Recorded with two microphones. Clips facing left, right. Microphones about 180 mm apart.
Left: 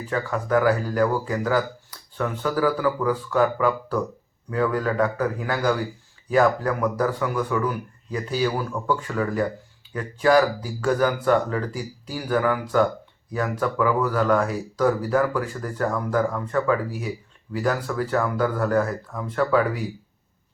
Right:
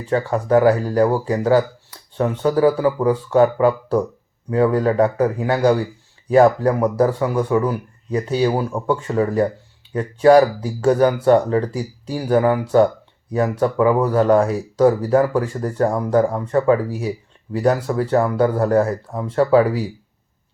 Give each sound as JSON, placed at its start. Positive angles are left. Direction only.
{"t": 0.1, "sound": "speech", "side_deg": -30}